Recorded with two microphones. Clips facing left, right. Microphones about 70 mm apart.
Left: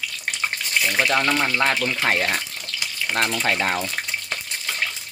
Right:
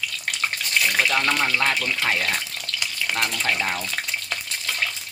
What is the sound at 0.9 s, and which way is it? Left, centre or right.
Speech, centre.